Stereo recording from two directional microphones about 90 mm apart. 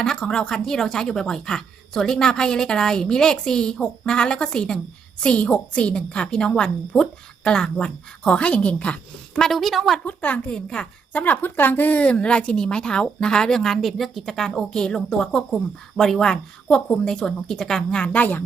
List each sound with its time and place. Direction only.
0.0 s a woman's voice: 5° left (ahead or behind)
10.1 s a woman's voice: 15° left (ahead or behind)